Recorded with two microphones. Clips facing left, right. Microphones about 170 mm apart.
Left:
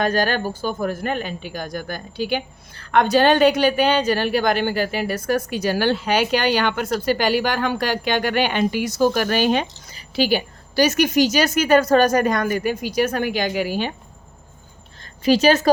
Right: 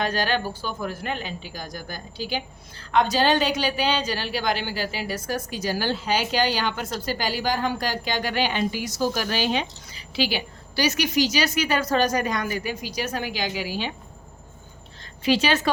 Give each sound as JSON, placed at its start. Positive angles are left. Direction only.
{"t": 0.0, "sound": "speech", "side_deg": 50}
{"t": 15.2, "sound": "speech", "side_deg": 40}